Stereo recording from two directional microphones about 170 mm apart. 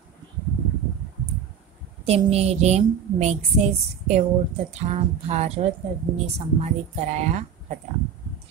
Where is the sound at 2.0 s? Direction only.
40° right (ahead or behind).